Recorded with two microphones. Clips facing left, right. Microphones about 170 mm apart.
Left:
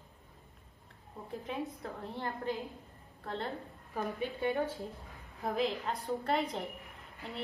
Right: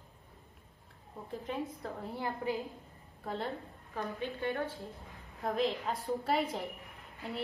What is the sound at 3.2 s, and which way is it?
Speech, 5° right (ahead or behind).